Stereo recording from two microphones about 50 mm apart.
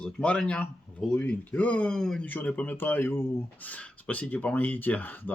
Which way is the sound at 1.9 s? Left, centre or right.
Centre.